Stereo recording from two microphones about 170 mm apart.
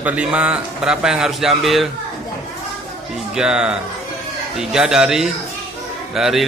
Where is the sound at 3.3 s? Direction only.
5° right (ahead or behind).